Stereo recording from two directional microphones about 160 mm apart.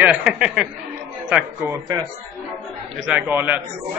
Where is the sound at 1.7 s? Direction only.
20° right (ahead or behind).